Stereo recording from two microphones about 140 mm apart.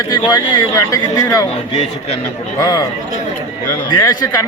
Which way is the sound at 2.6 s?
25° left (ahead or behind).